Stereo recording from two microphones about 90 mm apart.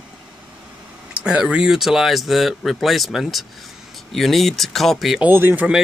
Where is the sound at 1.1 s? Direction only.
10° right (ahead or behind).